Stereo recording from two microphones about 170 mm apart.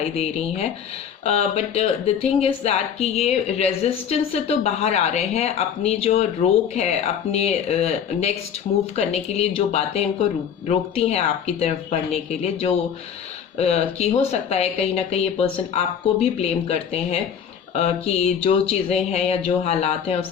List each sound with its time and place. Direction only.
0.0 s speech: 35° left (ahead or behind)